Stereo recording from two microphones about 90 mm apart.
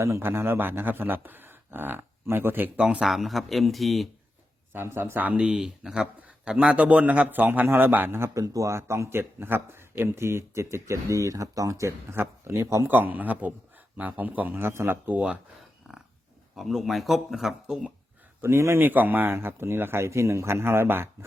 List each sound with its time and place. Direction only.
0.0 s a man's voice: 30° right (ahead or behind)
2.7 s speech: 10° right (ahead or behind)
4.7 s a man's voice: 25° right (ahead or behind)
12.9 s a man's voice: 20° right (ahead or behind)
16.6 s speech: centre (ahead or behind)
18.4 s a man's voice: 30° right (ahead or behind)